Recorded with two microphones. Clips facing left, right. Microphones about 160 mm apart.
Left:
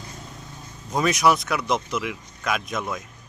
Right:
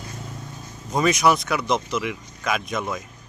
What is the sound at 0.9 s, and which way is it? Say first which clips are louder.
A man's voice: right 1 dB; centre (ahead or behind).